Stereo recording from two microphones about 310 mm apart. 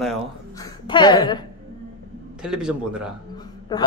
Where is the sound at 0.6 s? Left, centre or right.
Centre.